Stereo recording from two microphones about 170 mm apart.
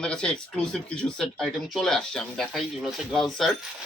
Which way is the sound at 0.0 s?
5° left (ahead or behind).